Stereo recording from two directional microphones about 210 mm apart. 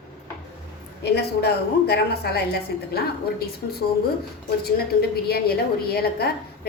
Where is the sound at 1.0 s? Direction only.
50° left (ahead or behind).